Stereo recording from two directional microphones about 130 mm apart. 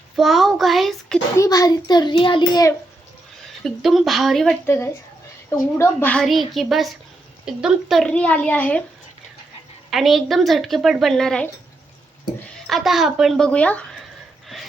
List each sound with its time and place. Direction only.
0.2 s speech: centre (ahead or behind)
1.4 s a child's voice: 30° left (ahead or behind)
3.4 s speech: centre (ahead or behind)
4.6 s a woman's voice: 15° left (ahead or behind)
6.1 s a woman's voice: centre (ahead or behind)
9.9 s speech: centre (ahead or behind)
12.6 s speech: centre (ahead or behind)
14.5 s a sound: centre (ahead or behind)